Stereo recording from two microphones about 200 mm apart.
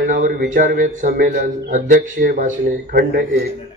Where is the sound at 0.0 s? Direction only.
40° right (ahead or behind).